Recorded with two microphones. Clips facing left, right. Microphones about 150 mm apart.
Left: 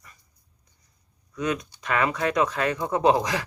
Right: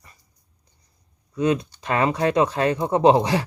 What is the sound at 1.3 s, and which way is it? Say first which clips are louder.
Speech: right 6 dB; 30° right (ahead or behind).